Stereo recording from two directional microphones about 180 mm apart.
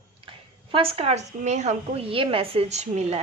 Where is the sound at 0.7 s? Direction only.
30° right (ahead or behind).